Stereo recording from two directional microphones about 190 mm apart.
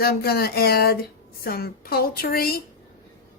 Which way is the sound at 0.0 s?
55° left (ahead or behind).